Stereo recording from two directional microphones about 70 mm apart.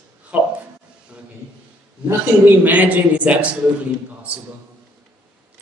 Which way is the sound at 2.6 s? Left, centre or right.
Right.